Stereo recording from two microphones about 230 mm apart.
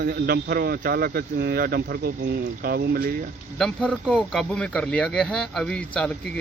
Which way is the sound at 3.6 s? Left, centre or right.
Centre.